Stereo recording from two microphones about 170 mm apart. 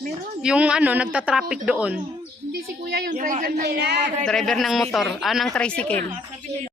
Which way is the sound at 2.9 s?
70° right (ahead or behind).